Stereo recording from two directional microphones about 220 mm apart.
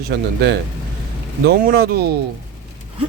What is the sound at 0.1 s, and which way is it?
Speech, 45° right (ahead or behind).